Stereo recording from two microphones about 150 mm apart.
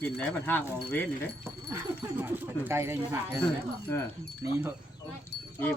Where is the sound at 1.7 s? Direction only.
15° right (ahead or behind).